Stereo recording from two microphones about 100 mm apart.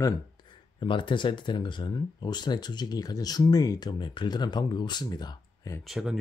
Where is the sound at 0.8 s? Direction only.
55° left (ahead or behind); by 5.7 s 40° left (ahead or behind).